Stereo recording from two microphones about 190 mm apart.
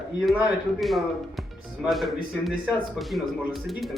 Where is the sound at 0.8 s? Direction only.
Centre (ahead or behind).